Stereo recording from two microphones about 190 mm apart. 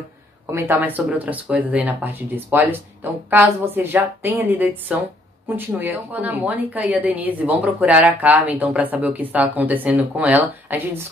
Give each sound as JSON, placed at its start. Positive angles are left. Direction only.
{"t": 0.5, "sound": "a woman's voice", "side_deg": -10}